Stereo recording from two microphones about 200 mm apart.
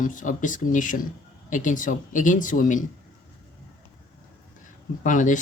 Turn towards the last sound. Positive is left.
turn(degrees=40)  # may be behind; listen again after turning